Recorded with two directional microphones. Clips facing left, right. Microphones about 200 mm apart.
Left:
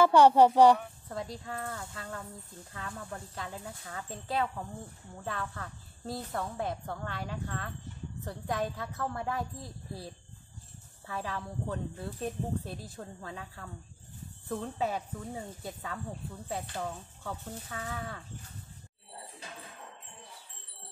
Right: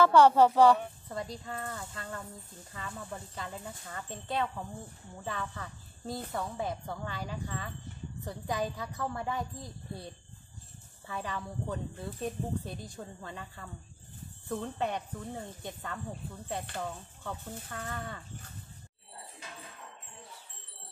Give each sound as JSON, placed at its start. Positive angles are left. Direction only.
{"t": 0.0, "sound": "speech", "side_deg": 15}
{"t": 1.0, "sound": "speech", "side_deg": 0}